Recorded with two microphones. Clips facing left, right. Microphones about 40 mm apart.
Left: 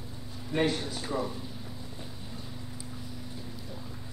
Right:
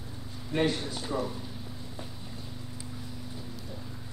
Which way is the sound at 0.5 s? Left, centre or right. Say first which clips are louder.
Even; centre.